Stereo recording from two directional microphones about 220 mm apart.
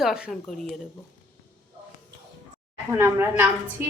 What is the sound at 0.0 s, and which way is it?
Speech, centre (ahead or behind).